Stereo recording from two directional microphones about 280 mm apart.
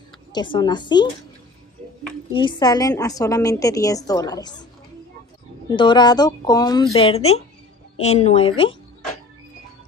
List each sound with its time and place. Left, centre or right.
0.3 s a woman's voice: centre
2.3 s a woman's voice: centre
5.7 s a woman's voice: centre